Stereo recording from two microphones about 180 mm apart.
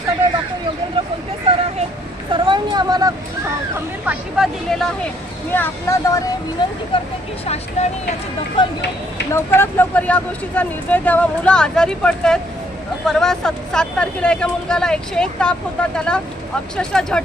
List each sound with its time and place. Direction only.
2.3 s a sound: 25° right (ahead or behind)
4.0 s speech: centre (ahead or behind)
5.5 s speech: 10° left (ahead or behind)
7.4 s speech: 35° left (ahead or behind)
9.3 s speech: 15° left (ahead or behind)